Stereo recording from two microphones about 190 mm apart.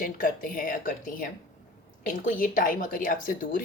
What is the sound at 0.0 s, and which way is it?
Speech, 45° left (ahead or behind).